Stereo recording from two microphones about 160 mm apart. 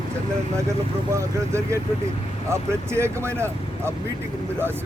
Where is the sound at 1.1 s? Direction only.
20° right (ahead or behind).